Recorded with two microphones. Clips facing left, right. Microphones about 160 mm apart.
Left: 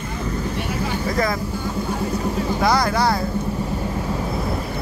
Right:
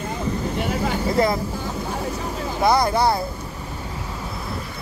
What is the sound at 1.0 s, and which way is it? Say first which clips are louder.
Speech: right 3 dB; 25° right (ahead or behind).